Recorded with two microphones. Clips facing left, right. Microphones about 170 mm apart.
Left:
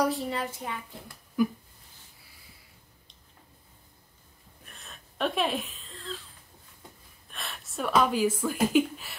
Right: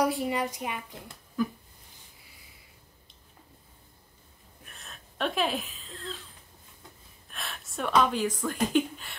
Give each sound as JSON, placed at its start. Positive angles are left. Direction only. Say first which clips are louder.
{"t": 0.0, "sound": "a woman's voice", "louder": "right 1 dB", "side_deg": -15}
{"t": 1.4, "sound": "a sound", "louder": "left 3 dB", "side_deg": 10}
{"t": 4.6, "sound": "wheeze", "louder": "even", "side_deg": 0}
{"t": 7.2, "sound": "speech", "louder": "even", "side_deg": 0}